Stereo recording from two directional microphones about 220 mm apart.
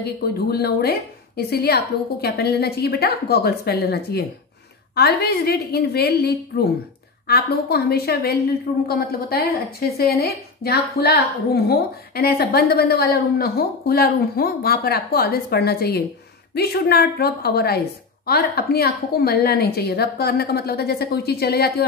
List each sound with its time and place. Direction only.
0.0 s a woman's voice: 45° left (ahead or behind)